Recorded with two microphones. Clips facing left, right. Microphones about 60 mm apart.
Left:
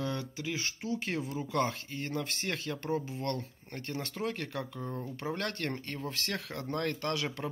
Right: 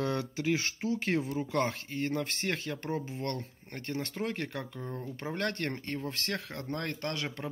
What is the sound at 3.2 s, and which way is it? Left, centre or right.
Speech, right.